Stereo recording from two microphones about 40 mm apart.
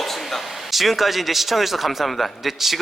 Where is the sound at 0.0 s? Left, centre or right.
Centre.